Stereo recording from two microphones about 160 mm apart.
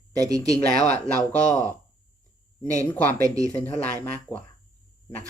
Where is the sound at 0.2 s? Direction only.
20° right (ahead or behind).